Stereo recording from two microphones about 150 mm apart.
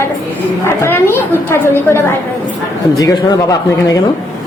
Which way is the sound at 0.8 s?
15° left (ahead or behind).